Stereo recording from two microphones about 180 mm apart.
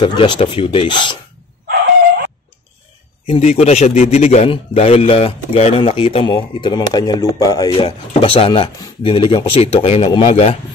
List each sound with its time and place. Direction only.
0.0 s speech: 25° left (ahead or behind)
3.3 s a man's voice: 35° left (ahead or behind)